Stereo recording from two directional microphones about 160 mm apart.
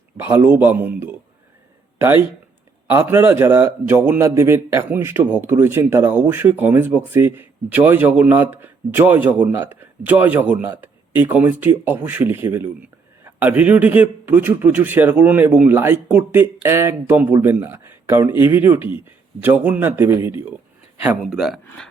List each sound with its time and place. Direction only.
0.2 s a man's voice: 15° right (ahead or behind)
2.9 s a man's voice: 15° right (ahead or behind)